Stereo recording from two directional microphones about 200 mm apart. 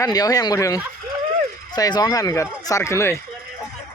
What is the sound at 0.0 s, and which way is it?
Speech, 20° left (ahead or behind).